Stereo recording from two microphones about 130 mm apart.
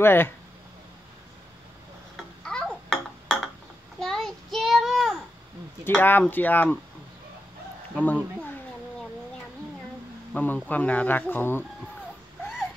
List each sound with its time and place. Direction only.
0.0 s speech: 15° left (ahead or behind)
2.1 s babbling: 5° left (ahead or behind)
4.0 s child singing: 5° left (ahead or behind)
5.9 s speech: 15° left (ahead or behind)
7.9 s speech: 10° left (ahead or behind)
10.3 s speech: 15° left (ahead or behind)